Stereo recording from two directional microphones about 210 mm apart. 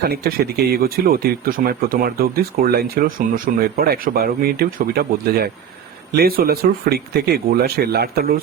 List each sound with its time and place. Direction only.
0.0 s speech: 45° right (ahead or behind)